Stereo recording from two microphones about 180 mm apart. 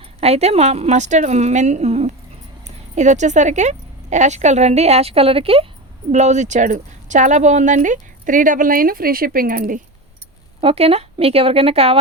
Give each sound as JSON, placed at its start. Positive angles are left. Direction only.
{"t": 0.2, "sound": "a woman's voice", "side_deg": -35}
{"t": 10.6, "sound": "a woman's voice", "side_deg": -35}